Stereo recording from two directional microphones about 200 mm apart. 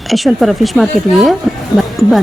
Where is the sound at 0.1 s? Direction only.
Centre (ahead or behind).